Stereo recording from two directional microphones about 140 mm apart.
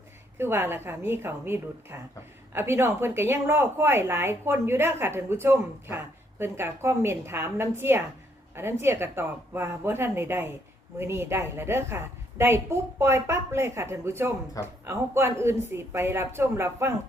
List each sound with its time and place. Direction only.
0.3 s a woman's voice: 15° right (ahead or behind)